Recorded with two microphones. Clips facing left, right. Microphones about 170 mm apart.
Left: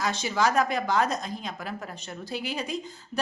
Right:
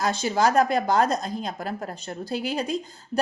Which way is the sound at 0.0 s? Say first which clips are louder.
Right 4 dB; 35° right (ahead or behind).